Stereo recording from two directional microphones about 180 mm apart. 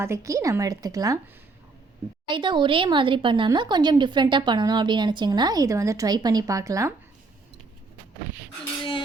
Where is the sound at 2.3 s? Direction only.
25° right (ahead or behind).